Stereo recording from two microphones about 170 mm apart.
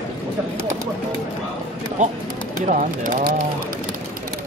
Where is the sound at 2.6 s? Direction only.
55° right (ahead or behind).